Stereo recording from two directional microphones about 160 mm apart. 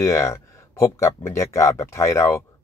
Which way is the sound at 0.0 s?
15° left (ahead or behind).